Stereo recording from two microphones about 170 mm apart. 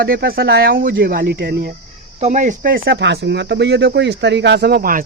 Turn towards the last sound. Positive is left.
turn(degrees=-60)  # may be behind; listen again after turning